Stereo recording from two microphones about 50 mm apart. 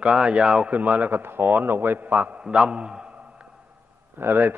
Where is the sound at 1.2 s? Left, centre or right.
Right.